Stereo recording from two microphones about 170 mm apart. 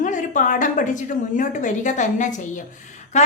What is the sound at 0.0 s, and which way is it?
A woman's voice, 50° left (ahead or behind).